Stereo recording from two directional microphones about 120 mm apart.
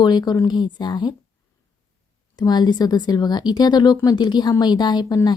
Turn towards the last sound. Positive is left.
turn(degrees=35)  # may be behind; listen again after turning